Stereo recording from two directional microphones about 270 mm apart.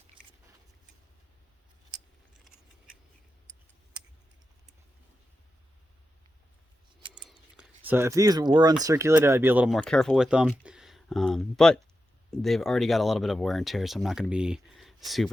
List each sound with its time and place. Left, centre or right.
1.9 s keys jangling: centre
7.2 s a sound: centre
8.8 s speech: centre